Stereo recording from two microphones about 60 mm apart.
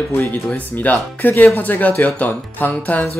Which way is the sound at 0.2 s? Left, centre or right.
Left.